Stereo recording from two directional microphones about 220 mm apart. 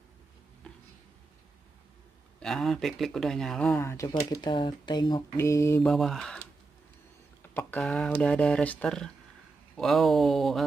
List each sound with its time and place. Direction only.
2.4 s speech: centre (ahead or behind)
5.9 s speech: centre (ahead or behind)
7.4 s speech: 10° left (ahead or behind)